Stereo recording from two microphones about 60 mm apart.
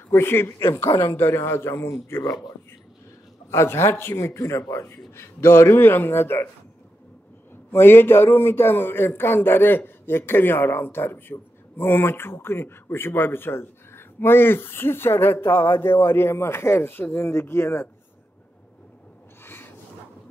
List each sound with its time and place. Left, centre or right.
0.1 s a man's voice: left
3.4 s a man's voice: left
4.8 s a man's voice: left
7.7 s a man's voice: left
19.4 s rub: left